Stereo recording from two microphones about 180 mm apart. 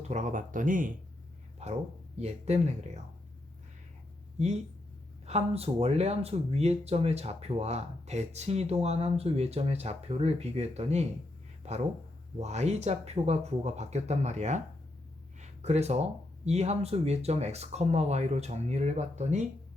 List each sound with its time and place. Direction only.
0.1 s speech: 40° right (ahead or behind)
1.6 s speech: 35° right (ahead or behind)
4.4 s speech: 40° right (ahead or behind)
15.4 s a sound: 35° right (ahead or behind)
16.5 s speech: 35° right (ahead or behind)